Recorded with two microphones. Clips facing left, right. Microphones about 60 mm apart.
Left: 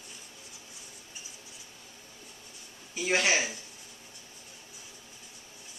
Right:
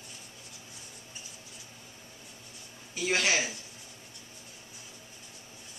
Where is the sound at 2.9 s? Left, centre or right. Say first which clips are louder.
Left 1 dB; centre.